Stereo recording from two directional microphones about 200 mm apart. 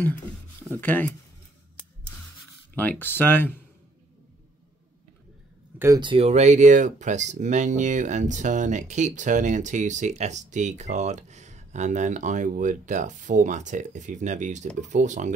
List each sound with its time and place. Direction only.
0.7 s speech: 10° left (ahead or behind)
2.7 s speech: 10° left (ahead or behind)
5.8 s speech: 20° right (ahead or behind); by 15.3 s 35° right (ahead or behind)